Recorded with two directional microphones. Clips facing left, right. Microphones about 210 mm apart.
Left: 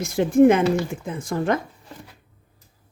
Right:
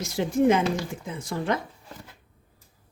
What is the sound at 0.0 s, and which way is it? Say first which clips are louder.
Speech: left 7 dB; 55° left (ahead or behind).